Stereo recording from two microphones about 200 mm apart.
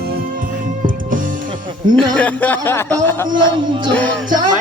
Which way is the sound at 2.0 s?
5° left (ahead or behind).